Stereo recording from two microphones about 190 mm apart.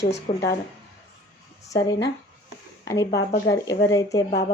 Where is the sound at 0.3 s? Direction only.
35° left (ahead or behind).